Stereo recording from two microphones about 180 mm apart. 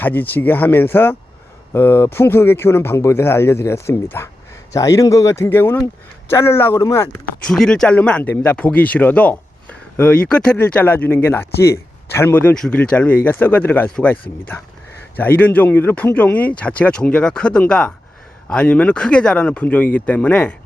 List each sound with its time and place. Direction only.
0.0 s speech: 10° left (ahead or behind)
7.4 s speech: 5° left (ahead or behind)